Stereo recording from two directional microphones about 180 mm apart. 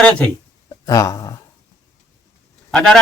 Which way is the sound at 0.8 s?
20° left (ahead or behind).